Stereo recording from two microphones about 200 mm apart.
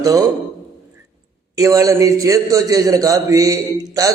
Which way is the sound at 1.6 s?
15° right (ahead or behind).